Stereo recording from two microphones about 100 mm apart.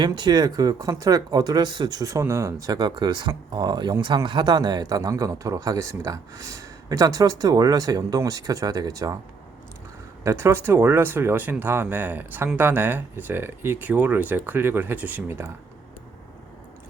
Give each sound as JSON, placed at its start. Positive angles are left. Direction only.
{"t": 0.0, "sound": "speech", "side_deg": -45}
{"t": 10.2, "sound": "speech", "side_deg": -25}